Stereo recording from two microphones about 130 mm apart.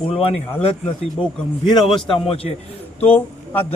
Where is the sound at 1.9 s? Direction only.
40° left (ahead or behind).